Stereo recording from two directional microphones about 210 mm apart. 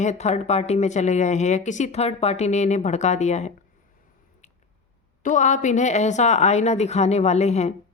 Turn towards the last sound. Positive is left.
turn(degrees=30)  # may be behind; listen again after turning